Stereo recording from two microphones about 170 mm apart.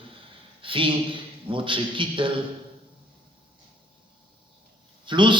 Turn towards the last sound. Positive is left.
turn(degrees=-30)  # may be behind; listen again after turning